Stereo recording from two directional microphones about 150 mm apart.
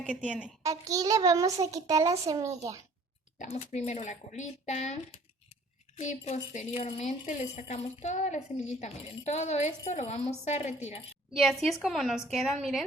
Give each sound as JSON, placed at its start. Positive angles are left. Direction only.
{"t": 0.3, "sound": "a woman's voice", "side_deg": -5}
{"t": 0.6, "sound": "a child's voice", "side_deg": -20}
{"t": 3.3, "sound": "speech", "side_deg": 50}
{"t": 6.0, "sound": "speech", "side_deg": 50}
{"t": 11.3, "sound": "a woman's voice", "side_deg": 0}